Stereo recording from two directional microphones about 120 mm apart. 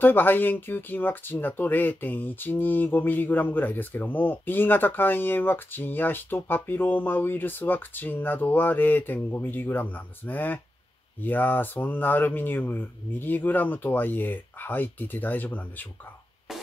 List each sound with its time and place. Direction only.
0.0 s speech: 15° left (ahead or behind)